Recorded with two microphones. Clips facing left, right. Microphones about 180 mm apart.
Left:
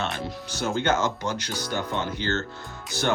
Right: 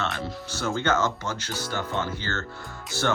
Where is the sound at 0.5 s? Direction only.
15° left (ahead or behind).